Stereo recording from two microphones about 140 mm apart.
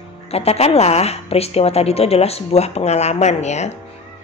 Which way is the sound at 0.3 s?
45° left (ahead or behind).